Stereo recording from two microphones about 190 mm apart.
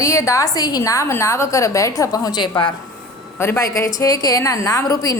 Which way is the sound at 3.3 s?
15° left (ahead or behind).